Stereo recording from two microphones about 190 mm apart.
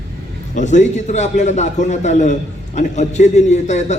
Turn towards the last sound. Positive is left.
turn(degrees=35)  # may be behind; listen again after turning